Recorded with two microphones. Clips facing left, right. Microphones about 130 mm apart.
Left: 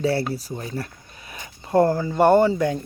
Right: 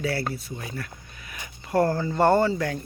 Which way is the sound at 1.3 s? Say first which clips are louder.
Left 5 dB; 25° left (ahead or behind).